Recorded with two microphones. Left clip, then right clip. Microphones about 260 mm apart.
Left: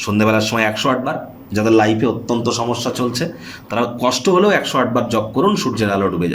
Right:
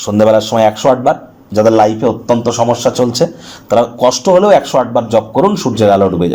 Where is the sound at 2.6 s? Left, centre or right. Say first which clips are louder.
Right 9 dB; centre.